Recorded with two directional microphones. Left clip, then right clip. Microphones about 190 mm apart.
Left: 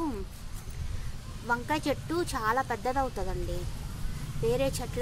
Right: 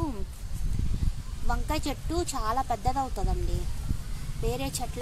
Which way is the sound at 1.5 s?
10° right (ahead or behind).